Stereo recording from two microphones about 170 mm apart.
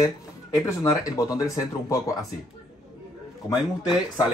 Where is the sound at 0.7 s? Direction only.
20° left (ahead or behind).